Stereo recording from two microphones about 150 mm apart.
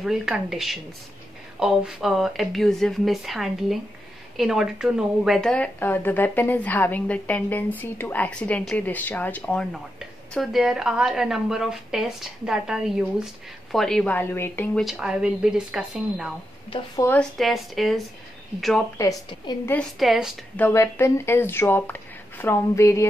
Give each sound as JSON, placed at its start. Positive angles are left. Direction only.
{"t": 0.0, "sound": "speech", "side_deg": 0}
{"t": 18.9, "sound": "a woman's voice", "side_deg": 20}
{"t": 19.7, "sound": "speech", "side_deg": 0}
{"t": 20.5, "sound": "speech", "side_deg": 15}